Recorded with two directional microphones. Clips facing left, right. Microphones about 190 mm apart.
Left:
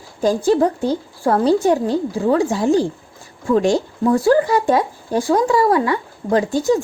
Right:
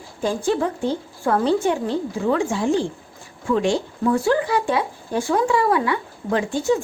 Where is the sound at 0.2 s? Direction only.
40° left (ahead or behind).